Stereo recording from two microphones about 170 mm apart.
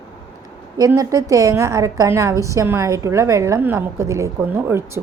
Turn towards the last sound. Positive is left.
turn(degrees=-15)  # may be behind; listen again after turning